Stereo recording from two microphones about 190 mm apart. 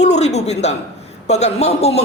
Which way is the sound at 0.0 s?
35° left (ahead or behind).